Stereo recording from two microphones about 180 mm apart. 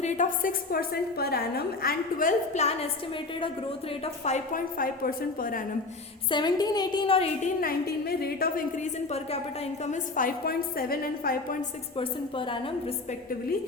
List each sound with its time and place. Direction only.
0.0 s a woman's voice: 45° left (ahead or behind)
4.0 s a woman's voice: 40° left (ahead or behind)
6.3 s a woman's voice: 25° left (ahead or behind)
7.6 s a woman's voice: 55° left (ahead or behind)
11.9 s a woman's voice: 30° left (ahead or behind)